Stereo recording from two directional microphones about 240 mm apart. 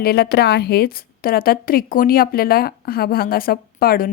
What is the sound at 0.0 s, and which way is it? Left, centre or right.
Speech, left.